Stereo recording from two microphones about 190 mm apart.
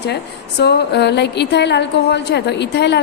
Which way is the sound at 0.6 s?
60° left (ahead or behind).